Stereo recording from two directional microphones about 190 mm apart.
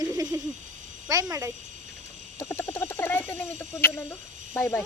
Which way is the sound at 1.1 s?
20° right (ahead or behind).